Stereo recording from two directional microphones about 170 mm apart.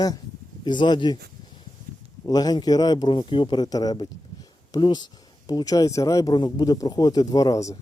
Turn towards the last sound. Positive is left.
turn(degrees=20)  # may be behind; listen again after turning